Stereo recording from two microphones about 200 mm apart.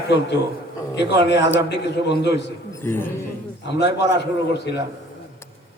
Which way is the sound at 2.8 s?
10° left (ahead or behind).